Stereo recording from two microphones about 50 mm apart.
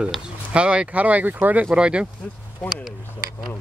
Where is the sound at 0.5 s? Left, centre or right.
Right.